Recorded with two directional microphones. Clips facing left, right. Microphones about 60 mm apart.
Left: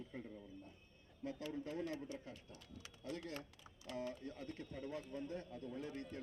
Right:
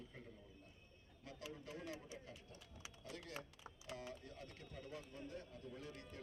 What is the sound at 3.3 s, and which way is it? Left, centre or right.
Speech, centre.